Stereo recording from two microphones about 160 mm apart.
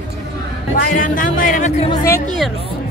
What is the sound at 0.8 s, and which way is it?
Speech, 60° left (ahead or behind).